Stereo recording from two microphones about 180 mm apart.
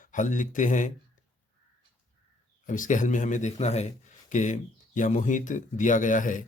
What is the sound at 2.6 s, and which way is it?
Speech, 45° left (ahead or behind).